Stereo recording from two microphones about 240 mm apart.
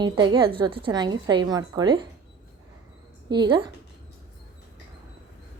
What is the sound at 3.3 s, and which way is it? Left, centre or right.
Speech, centre.